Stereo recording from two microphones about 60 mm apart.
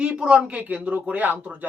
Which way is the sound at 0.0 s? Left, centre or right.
Centre.